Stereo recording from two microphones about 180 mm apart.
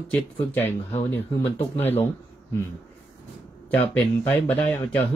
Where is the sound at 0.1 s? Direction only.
10° left (ahead or behind).